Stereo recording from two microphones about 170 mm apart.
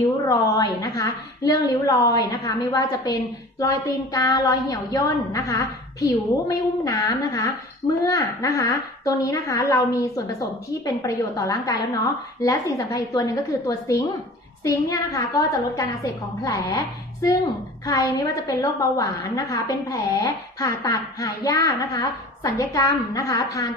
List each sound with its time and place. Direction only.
0.3 s a woman's voice: 20° left (ahead or behind)